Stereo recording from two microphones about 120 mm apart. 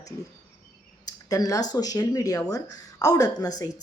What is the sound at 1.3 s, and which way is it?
A woman's voice, 30° left (ahead or behind).